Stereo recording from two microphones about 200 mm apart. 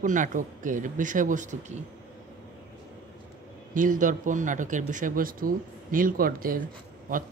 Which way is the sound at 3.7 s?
40° right (ahead or behind).